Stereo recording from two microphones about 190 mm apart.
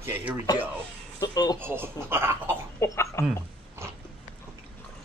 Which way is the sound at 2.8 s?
15° left (ahead or behind).